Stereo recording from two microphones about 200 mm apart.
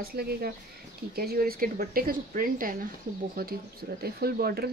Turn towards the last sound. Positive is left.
turn(degrees=-50)  # may be behind; listen again after turning